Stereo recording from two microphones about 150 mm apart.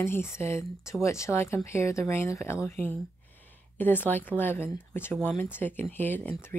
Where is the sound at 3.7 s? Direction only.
15° left (ahead or behind).